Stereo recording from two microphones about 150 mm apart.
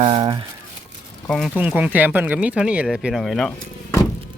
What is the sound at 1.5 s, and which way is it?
Speech, 10° right (ahead or behind).